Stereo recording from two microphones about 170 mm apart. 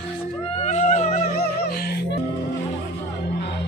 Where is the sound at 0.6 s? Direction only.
40° left (ahead or behind).